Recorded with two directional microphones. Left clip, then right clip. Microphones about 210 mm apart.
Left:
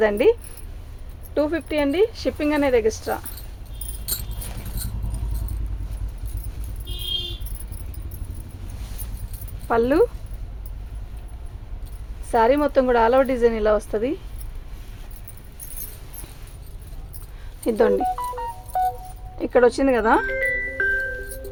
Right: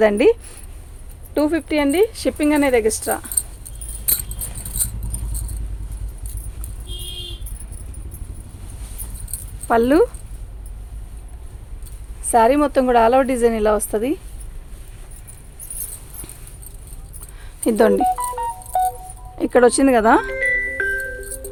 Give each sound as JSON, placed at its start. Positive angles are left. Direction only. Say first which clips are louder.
{"t": 0.0, "sound": "a woman's voice", "louder": "right 3 dB", "side_deg": -40}
{"t": 9.6, "sound": "speech", "louder": "right 3 dB", "side_deg": -50}
{"t": 12.3, "sound": "a woman's voice", "louder": "right 3 dB", "side_deg": -40}
{"t": 17.6, "sound": "speech", "louder": "right 4 dB", "side_deg": -50}
{"t": 18.1, "sound": "music", "louder": "right 5 dB", "side_deg": -35}
{"t": 19.4, "sound": "a woman's voice", "louder": "right 3 dB", "side_deg": -45}
{"t": 20.2, "sound": "music", "louder": "right 3 dB", "side_deg": -30}